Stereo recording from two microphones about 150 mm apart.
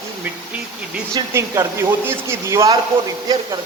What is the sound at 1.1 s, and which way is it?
Speech, 15° right (ahead or behind).